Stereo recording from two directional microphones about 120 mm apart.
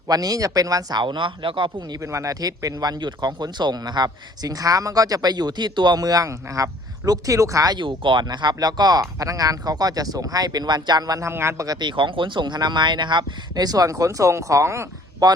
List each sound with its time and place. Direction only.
0.1 s speech: 30° right (ahead or behind)
2.0 s speech: 25° right (ahead or behind)